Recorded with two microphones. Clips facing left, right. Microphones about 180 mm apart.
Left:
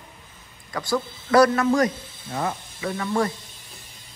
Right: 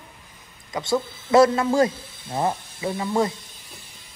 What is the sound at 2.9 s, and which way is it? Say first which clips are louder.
Speech: right 1 dB; 20° right (ahead or behind).